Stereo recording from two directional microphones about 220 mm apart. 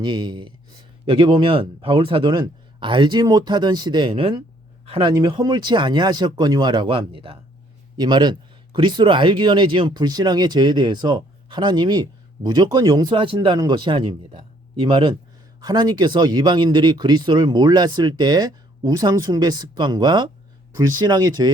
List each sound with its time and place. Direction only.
0.0 s speech: 20° right (ahead or behind)